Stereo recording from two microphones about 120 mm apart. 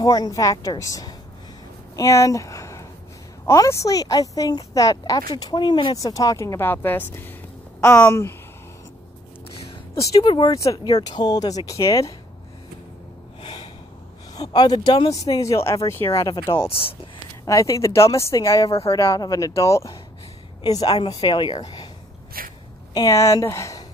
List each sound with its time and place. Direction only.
0.0 s speech: 35° left (ahead or behind)
5.3 s speech: 40° left (ahead or behind); by 8.4 s 20° left (ahead or behind)
10.4 s speech: 25° left (ahead or behind)
13.4 s snort: 45° left (ahead or behind)
14.3 s speech: 35° left (ahead or behind)
16.6 s speech: 50° left (ahead or behind)
17.5 s speech: 25° left (ahead or behind)
22.9 s speech: 25° left (ahead or behind)